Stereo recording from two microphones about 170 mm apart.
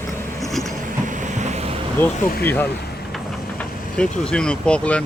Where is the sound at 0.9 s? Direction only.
50° right (ahead or behind).